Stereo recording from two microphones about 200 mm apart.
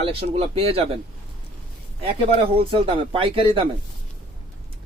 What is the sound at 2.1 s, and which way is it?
Speech, 30° right (ahead or behind).